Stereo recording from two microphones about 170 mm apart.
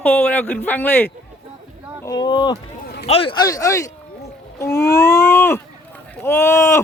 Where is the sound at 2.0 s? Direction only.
25° left (ahead or behind).